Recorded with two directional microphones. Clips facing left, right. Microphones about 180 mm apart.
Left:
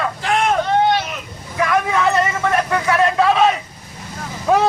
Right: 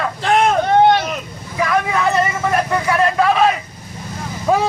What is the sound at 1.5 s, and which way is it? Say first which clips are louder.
Vehicle: even; 5° right (ahead or behind).